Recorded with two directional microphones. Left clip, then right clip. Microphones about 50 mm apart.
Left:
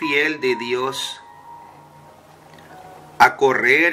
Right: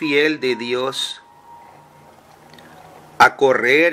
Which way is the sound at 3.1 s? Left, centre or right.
Right.